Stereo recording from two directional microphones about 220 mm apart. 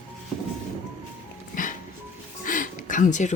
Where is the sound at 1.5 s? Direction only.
35° left (ahead or behind).